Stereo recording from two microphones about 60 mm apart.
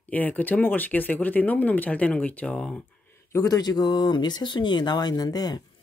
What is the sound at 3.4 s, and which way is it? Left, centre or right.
Speech, left.